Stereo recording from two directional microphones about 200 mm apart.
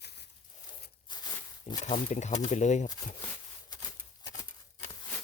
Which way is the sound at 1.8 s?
35° left (ahead or behind).